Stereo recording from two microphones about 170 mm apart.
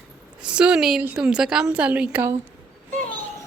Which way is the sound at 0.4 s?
5° right (ahead or behind).